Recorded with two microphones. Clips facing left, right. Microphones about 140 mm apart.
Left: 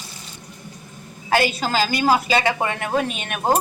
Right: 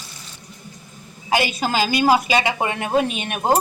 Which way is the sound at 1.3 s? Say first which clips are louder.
Left 1 dB; 15° right (ahead or behind).